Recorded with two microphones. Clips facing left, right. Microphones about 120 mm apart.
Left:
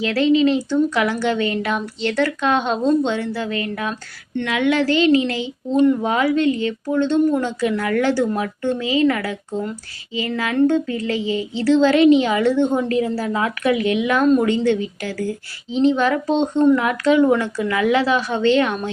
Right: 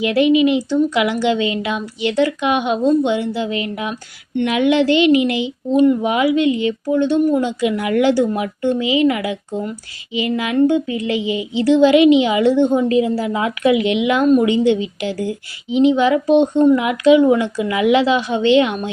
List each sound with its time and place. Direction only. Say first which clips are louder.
0.0 s speech: right 2 dB; 15° right (ahead or behind)